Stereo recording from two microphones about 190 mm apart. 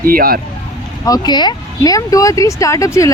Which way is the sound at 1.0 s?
20° left (ahead or behind).